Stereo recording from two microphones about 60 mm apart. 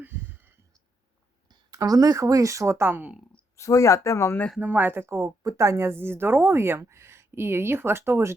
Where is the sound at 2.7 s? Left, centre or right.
Right.